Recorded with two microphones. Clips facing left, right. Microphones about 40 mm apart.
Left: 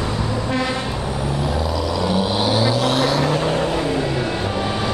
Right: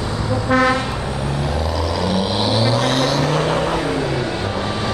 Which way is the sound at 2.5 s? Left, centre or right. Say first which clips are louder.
Right 2 dB; right.